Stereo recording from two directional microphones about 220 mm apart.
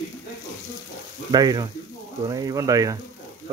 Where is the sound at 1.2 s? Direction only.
20° right (ahead or behind).